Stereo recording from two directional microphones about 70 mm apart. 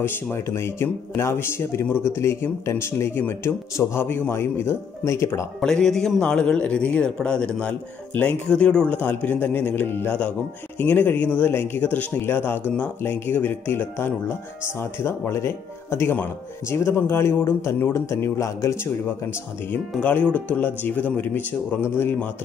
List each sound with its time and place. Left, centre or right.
0.0 s speech: left
3.7 s speech: left
4.0 s speech: left
5.6 s a man's voice: centre; by 18.8 s left
19.0 s speech: left